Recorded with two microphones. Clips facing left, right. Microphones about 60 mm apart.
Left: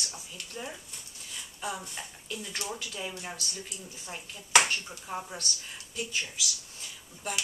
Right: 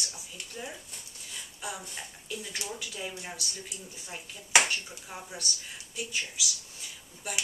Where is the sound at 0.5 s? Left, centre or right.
Centre.